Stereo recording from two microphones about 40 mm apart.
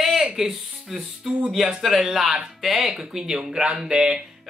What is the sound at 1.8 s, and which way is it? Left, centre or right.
Speech, centre.